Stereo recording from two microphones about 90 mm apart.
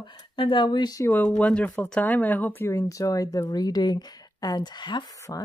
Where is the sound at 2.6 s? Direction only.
35° left (ahead or behind); by 5.1 s 55° left (ahead or behind).